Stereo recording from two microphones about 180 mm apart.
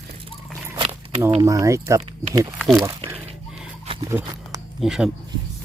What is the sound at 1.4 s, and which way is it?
Speech, 15° right (ahead or behind).